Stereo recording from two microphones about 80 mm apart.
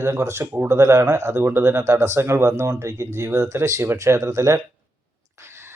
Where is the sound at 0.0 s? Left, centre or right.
Right.